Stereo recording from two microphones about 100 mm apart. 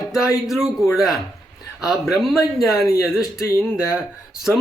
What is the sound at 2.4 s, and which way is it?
Speech, 35° left (ahead or behind).